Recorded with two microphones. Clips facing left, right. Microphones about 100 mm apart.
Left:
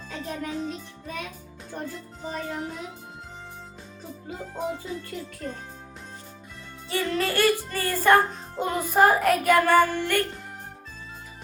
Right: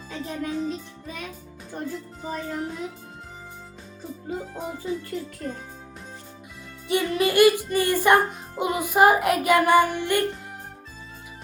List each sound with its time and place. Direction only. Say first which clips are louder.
6.8 s music: right 4 dB; 15° right (ahead or behind)